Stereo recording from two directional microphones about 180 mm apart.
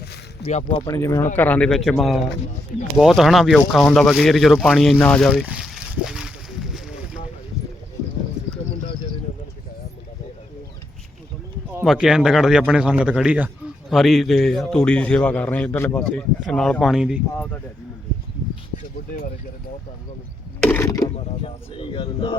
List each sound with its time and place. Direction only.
0.4 s speech: 30° left (ahead or behind)
0.9 s a man's voice: 15° left (ahead or behind)
5.5 s a sound: centre (ahead or behind)
11.8 s a man's voice: 5° right (ahead or behind)
20.6 s speech: 10° left (ahead or behind)
21.4 s speech: 30° left (ahead or behind)